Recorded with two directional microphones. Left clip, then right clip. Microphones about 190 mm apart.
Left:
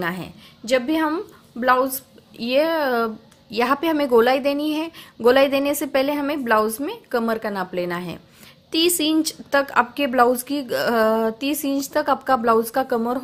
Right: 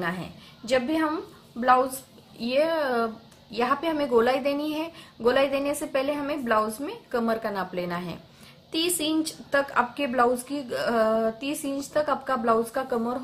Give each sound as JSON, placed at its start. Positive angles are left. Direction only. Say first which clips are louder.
{"t": 0.0, "sound": "a woman's voice", "louder": "left 4 dB", "side_deg": 40}